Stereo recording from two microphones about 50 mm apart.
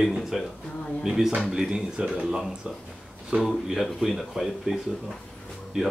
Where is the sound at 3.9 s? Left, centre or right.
Centre.